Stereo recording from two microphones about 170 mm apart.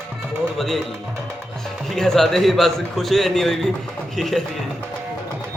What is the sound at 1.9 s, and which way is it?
A man's voice, 5° left (ahead or behind).